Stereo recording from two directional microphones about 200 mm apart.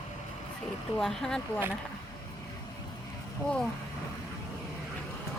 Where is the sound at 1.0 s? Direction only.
Centre (ahead or behind).